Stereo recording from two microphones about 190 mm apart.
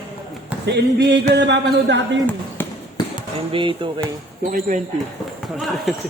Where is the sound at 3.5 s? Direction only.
25° right (ahead or behind).